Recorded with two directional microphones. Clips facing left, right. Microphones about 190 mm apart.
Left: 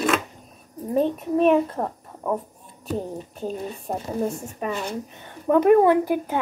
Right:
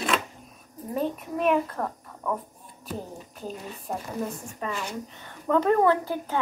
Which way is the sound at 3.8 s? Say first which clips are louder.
Left 5 dB; 30° left (ahead or behind).